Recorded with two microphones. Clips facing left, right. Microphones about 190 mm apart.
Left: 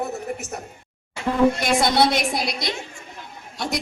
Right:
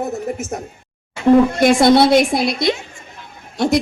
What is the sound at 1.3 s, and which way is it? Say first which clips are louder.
A man's voice: right 7 dB; 50° right (ahead or behind).